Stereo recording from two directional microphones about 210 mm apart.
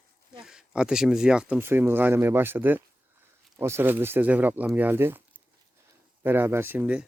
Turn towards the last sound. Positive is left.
turn(degrees=-5)  # may be behind; listen again after turning